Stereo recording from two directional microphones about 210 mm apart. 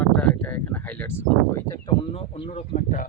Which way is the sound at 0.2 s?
10° left (ahead or behind).